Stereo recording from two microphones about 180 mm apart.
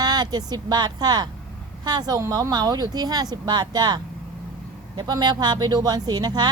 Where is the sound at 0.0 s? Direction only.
20° right (ahead or behind).